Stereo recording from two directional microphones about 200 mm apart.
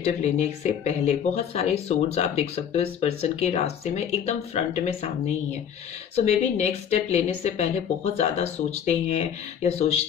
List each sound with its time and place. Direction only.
0.0 s speech: 35° left (ahead or behind)
6.1 s speech: 35° left (ahead or behind)